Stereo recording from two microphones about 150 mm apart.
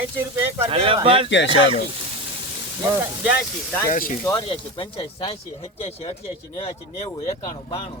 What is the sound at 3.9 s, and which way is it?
Speech, 65° left (ahead or behind).